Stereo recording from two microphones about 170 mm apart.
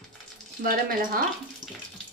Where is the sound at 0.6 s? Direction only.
55° right (ahead or behind).